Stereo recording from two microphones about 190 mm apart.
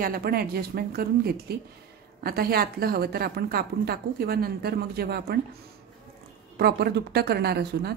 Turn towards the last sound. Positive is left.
turn(degrees=-55)  # may be behind; listen again after turning